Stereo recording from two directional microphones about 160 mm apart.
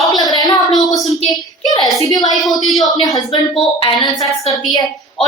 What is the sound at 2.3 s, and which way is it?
Speech, centre (ahead or behind).